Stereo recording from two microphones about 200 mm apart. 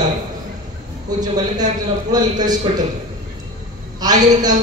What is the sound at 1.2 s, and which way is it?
A man's voice, 20° right (ahead or behind).